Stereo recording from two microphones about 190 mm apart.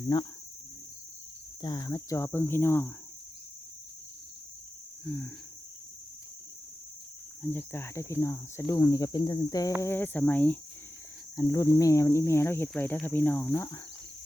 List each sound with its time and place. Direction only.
0.1 s speech: 20° left (ahead or behind)
1.6 s speech: 20° left (ahead or behind)
5.0 s speech: 10° left (ahead or behind)
7.4 s speech: 10° left (ahead or behind)